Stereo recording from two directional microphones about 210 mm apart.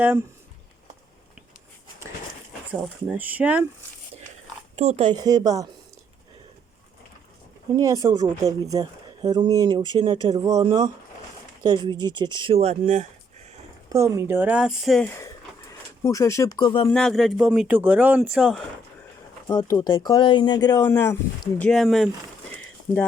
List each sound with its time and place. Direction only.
3.1 s speech: 5° right (ahead or behind)
4.8 s speech: 30° right (ahead or behind)
7.8 s speech: 15° right (ahead or behind); by 13.1 s 35° right (ahead or behind)
13.9 s speech: 15° right (ahead or behind); by 15.1 s centre (ahead or behind)
16.0 s speech: 15° left (ahead or behind)
16.9 s speech: centre (ahead or behind)
19.5 s speech: 15° left (ahead or behind)
21.7 s speech: centre (ahead or behind)